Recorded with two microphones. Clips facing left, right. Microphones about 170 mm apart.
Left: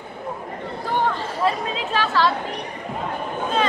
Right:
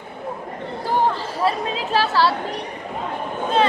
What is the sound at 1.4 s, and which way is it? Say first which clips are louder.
Speech: right 1 dB; 35° right (ahead or behind).